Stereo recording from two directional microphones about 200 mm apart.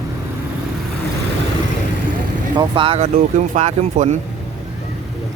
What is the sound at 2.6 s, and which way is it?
Speech, 25° right (ahead or behind).